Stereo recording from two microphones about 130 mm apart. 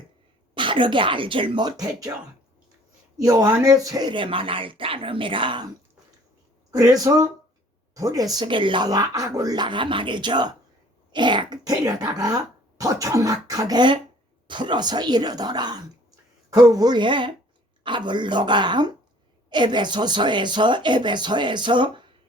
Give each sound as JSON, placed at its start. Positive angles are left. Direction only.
{"t": 0.5, "sound": "speech", "side_deg": -40}
{"t": 3.2, "sound": "speech", "side_deg": -25}
{"t": 6.7, "sound": "speech", "side_deg": -30}